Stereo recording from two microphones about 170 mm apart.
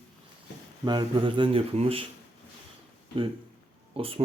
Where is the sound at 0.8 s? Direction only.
25° right (ahead or behind).